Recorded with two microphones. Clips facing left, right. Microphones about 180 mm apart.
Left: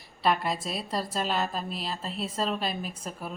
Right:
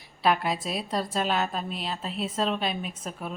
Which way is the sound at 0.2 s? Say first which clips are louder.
Right 2 dB; centre (ahead or behind).